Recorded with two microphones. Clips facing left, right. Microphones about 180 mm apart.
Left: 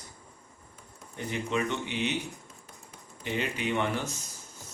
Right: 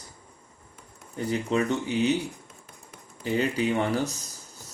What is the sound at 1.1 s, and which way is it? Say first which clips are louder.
Speech: right 5 dB; 35° right (ahead or behind).